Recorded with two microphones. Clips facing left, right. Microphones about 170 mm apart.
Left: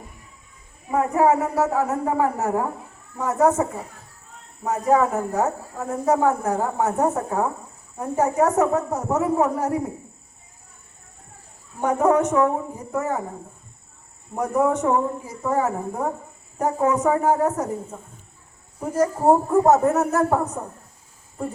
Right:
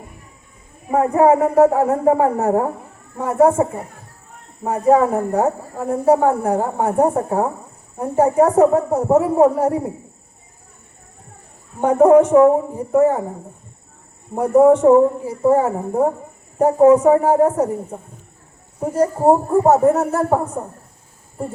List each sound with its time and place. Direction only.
0.9 s a woman's voice: 35° right (ahead or behind)
11.8 s speech: 30° right (ahead or behind)
14.3 s a woman's voice: 30° right (ahead or behind)
20.3 s a woman's voice: 20° right (ahead or behind)